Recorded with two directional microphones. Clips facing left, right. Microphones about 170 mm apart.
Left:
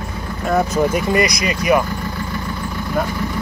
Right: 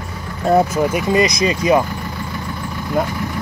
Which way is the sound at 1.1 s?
20° right (ahead or behind).